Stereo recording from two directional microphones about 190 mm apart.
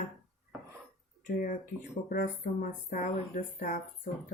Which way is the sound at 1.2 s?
45° left (ahead or behind).